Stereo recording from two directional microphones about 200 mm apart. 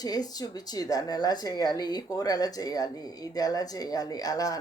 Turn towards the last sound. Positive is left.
turn(degrees=20)  # may be behind; listen again after turning